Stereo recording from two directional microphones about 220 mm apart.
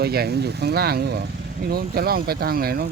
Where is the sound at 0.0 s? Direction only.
45° right (ahead or behind).